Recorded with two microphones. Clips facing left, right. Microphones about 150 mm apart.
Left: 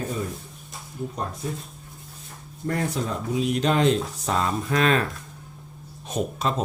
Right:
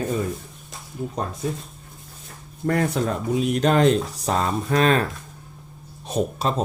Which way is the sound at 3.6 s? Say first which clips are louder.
Right 4 dB; 45° right (ahead or behind).